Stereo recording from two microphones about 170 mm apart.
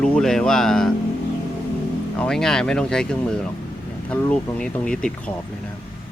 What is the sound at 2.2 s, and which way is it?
Speech, 5° left (ahead or behind).